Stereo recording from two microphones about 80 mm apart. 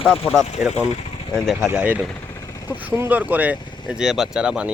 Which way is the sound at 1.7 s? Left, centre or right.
Right.